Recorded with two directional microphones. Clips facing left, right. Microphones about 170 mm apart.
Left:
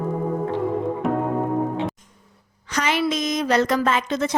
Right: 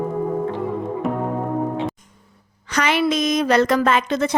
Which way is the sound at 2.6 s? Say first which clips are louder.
Right 3 dB; 65° right (ahead or behind).